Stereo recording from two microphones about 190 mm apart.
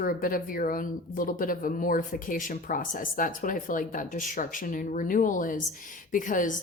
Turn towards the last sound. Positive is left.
turn(degrees=45)  # may be behind; listen again after turning